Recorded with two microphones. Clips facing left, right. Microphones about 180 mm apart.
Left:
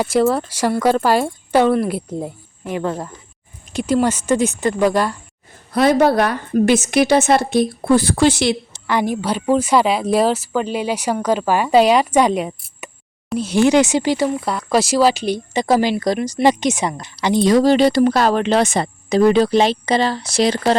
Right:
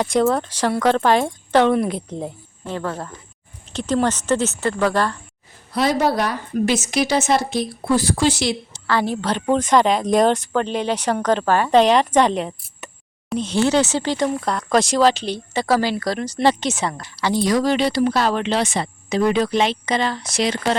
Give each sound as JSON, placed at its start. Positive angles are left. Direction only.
{"t": 0.0, "sound": "speech", "side_deg": 5}
{"t": 5.7, "sound": "a woman's voice", "side_deg": 55}
{"t": 8.9, "sound": "speech", "side_deg": 15}